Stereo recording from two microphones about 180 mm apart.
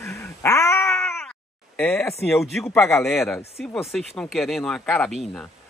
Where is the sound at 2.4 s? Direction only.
Centre (ahead or behind).